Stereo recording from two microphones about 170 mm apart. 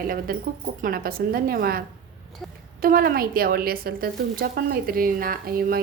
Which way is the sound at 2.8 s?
60° right (ahead or behind).